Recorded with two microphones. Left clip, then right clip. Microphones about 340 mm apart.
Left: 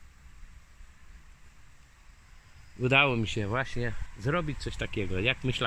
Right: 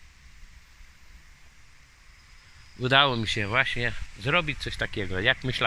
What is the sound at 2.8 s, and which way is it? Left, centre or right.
Speech, centre.